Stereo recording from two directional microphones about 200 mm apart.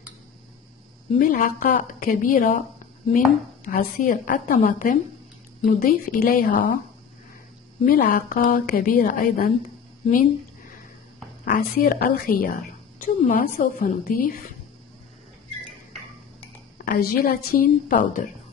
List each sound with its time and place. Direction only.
1.1 s a woman's voice: 45° left (ahead or behind)
3.6 s a woman's voice: 40° left (ahead or behind)
7.8 s a woman's voice: 45° left (ahead or behind)
11.4 s a woman's voice: 45° left (ahead or behind)
16.7 s a woman's voice: 45° left (ahead or behind)